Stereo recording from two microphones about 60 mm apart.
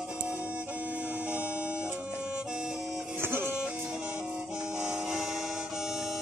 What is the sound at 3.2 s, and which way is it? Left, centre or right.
Music, right.